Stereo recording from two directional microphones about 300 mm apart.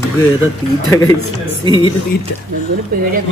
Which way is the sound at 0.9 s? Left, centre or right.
Centre.